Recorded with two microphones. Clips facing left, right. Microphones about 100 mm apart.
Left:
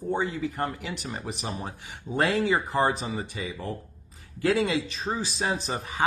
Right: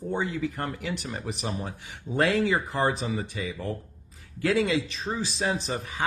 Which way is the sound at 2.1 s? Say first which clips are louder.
Even; 25° left (ahead or behind).